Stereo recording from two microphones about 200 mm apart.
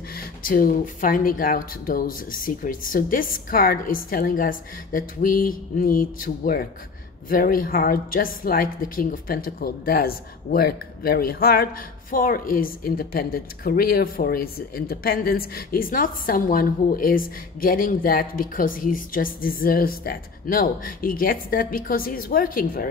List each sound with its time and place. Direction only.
0.1 s a woman's voice: 45° left (ahead or behind)